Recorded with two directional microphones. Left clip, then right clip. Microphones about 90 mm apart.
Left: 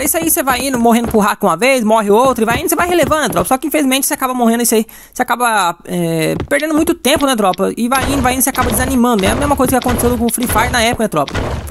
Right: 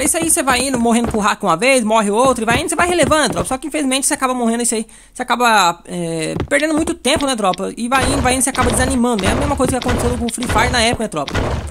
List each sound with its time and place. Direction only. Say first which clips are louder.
0.0 s speech: left 2 dB; 50° left (ahead or behind)
8.5 s speech: left 1 dB; centre (ahead or behind)
8.8 s speech: left 3 dB; 45° left (ahead or behind)
9.7 s speech: left 4 dB; centre (ahead or behind)
10.6 s speech: left 2 dB; 50° left (ahead or behind)